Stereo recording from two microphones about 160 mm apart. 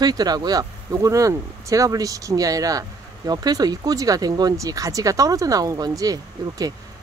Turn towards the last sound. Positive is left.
turn(degrees=-20)  # may be behind; listen again after turning